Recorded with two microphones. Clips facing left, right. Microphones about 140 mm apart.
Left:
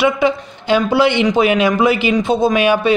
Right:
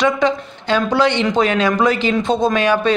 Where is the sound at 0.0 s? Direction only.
10° left (ahead or behind).